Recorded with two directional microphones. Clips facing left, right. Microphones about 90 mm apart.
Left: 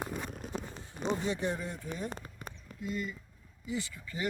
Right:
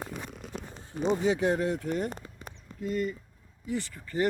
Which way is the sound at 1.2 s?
90° right.